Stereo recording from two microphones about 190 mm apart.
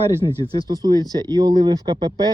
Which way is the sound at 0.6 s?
20° right (ahead or behind).